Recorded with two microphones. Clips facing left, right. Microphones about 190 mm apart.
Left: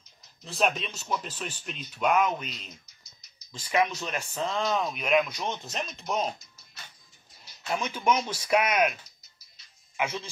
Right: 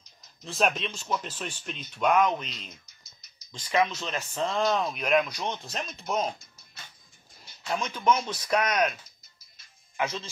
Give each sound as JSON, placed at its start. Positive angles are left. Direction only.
{"t": 0.5, "sound": "speech", "side_deg": 0}
{"t": 4.3, "sound": "speech", "side_deg": 0}
{"t": 7.7, "sound": "speech", "side_deg": 10}
{"t": 9.9, "sound": "speech", "side_deg": 15}